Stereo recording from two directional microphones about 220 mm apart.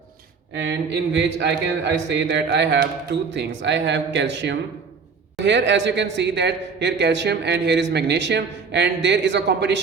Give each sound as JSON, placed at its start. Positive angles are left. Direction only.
{"t": 0.5, "sound": "a man's voice", "side_deg": -50}